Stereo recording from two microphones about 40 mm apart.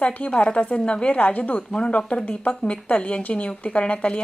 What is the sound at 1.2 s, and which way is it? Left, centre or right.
Speech, left.